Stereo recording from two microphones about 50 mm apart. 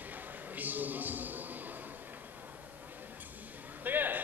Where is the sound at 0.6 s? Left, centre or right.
Right.